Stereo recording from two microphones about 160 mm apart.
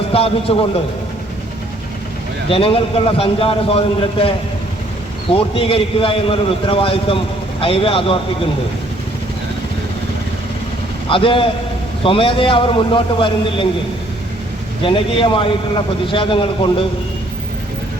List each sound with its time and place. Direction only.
0.1 s a man's voice: 35° left (ahead or behind)
2.5 s a man's voice: 35° left (ahead or behind)
11.1 s a man's voice: 35° left (ahead or behind)
14.8 s a man's voice: 35° left (ahead or behind)